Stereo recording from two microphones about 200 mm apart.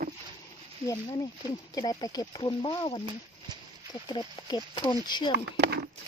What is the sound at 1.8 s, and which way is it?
Speech, 20° left (ahead or behind).